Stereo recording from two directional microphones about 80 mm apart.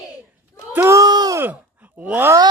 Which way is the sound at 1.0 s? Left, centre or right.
Right.